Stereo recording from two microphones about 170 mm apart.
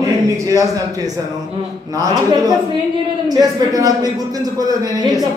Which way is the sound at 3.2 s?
20° right (ahead or behind).